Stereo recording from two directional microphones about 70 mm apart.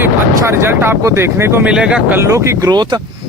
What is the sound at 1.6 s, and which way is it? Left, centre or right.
Speech, centre.